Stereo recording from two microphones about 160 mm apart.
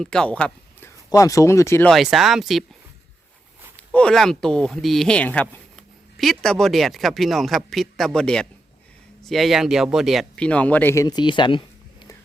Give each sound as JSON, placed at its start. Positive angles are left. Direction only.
{"t": 0.0, "sound": "speech", "side_deg": 5}
{"t": 1.1, "sound": "speech", "side_deg": 20}
{"t": 1.9, "sound": "speech", "side_deg": 0}
{"t": 3.9, "sound": "speech", "side_deg": 5}